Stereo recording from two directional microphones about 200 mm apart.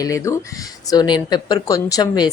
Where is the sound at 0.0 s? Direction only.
15° left (ahead or behind).